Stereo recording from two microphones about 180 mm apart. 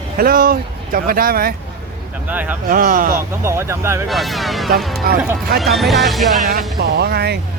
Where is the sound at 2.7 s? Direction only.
50° right (ahead or behind).